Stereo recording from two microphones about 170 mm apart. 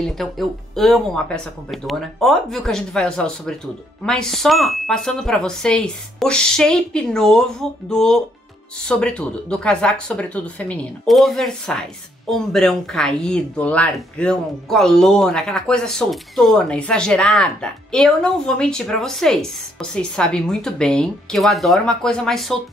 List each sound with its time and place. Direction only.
0.0 s speech: centre (ahead or behind)